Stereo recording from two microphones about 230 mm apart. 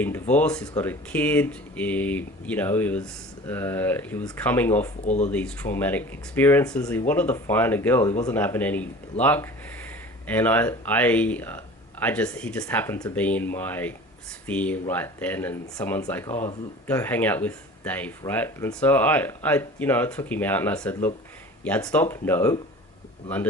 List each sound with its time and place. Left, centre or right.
0.0 s speech: centre
5.0 s speech: left
5.3 s speech: centre